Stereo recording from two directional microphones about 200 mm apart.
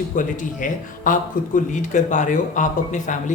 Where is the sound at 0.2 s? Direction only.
40° left (ahead or behind).